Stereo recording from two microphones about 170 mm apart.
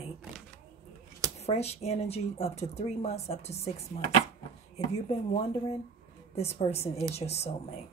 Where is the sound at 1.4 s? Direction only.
40° left (ahead or behind).